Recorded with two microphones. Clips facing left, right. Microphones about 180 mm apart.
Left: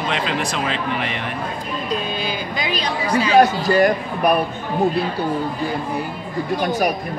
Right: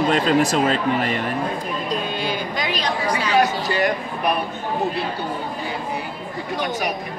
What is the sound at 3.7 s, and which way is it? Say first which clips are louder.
Speech: left 5 dB; 45° left (ahead or behind).